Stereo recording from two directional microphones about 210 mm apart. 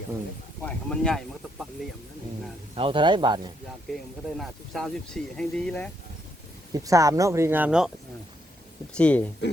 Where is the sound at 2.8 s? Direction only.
25° right (ahead or behind).